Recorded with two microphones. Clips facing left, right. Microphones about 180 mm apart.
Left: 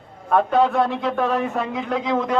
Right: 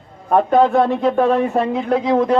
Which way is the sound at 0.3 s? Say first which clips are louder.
Right 4 dB; 40° right (ahead or behind).